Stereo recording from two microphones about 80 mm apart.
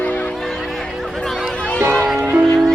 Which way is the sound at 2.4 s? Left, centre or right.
Centre.